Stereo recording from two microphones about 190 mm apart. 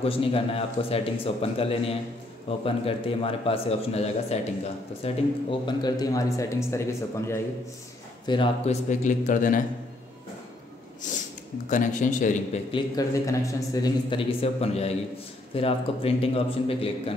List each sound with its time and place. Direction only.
0.0 s speech: 30° left (ahead or behind); by 7.3 s 15° left (ahead or behind)
8.3 s speech: 25° left (ahead or behind)
8.8 s speech: 40° left (ahead or behind)
11.0 s speech: 40° left (ahead or behind)
12.7 s a man's voice: 20° left (ahead or behind)
14.4 s speech: 35° left (ahead or behind)